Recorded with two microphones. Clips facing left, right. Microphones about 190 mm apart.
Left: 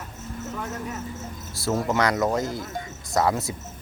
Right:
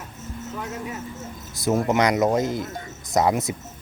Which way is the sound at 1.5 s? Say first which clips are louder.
Right 3 dB; 15° right (ahead or behind).